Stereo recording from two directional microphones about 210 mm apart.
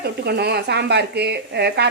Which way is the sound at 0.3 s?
50° right (ahead or behind).